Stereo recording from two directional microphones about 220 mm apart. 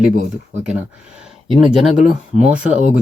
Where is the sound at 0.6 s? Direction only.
5° right (ahead or behind).